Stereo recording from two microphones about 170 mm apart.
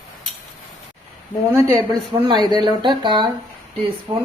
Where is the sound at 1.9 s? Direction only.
25° right (ahead or behind).